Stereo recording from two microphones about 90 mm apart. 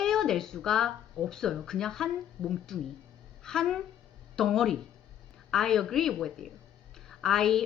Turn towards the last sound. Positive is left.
turn(degrees=5)  # may be behind; listen again after turning